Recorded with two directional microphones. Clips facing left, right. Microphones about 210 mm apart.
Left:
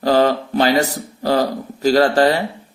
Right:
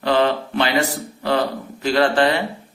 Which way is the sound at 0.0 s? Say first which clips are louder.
Left 3 dB; 40° left (ahead or behind).